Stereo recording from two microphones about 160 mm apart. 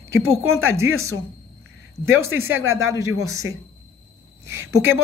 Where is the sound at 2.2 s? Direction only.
15° right (ahead or behind).